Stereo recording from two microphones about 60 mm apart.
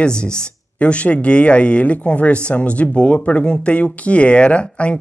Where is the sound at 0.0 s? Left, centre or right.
Centre.